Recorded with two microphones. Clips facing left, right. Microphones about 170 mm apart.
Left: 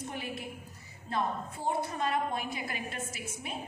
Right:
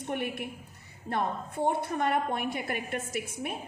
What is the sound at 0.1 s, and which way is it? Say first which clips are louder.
A woman's voice: right 6 dB; 60° right (ahead or behind).